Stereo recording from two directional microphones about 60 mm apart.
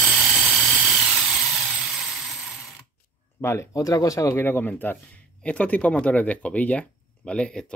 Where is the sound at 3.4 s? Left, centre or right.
Left.